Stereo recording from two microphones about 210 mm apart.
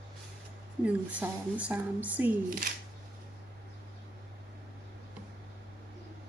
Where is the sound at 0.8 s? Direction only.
5° right (ahead or behind).